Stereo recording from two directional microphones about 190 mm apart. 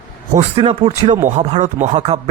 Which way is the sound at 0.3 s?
35° right (ahead or behind).